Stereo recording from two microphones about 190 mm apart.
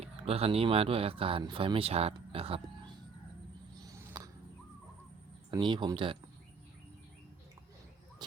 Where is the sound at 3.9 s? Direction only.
20° right (ahead or behind).